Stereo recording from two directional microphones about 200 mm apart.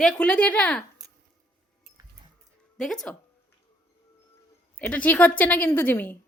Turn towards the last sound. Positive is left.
turn(degrees=10)  # may be behind; listen again after turning